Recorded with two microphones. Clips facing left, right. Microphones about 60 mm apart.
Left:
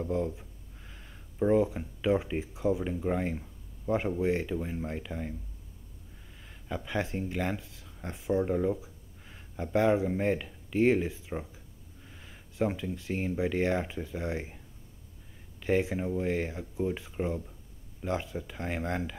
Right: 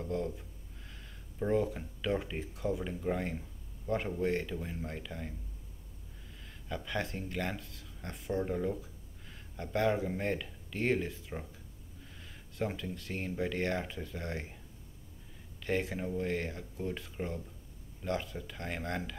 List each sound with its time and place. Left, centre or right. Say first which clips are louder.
0.0 s speech: left 4 dB; centre
6.7 s speech: left 4 dB; centre
12.5 s speech: left 6 dB; centre
15.6 s speech: left 6 dB; centre